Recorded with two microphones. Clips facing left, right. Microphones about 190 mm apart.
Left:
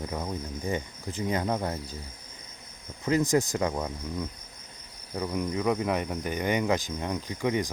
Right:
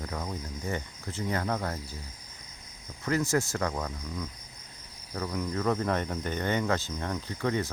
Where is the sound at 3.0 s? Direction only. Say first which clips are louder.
Left 3 dB; 15° left (ahead or behind).